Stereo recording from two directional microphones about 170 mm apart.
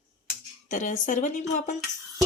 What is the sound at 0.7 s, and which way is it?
Speech, 50° left (ahead or behind).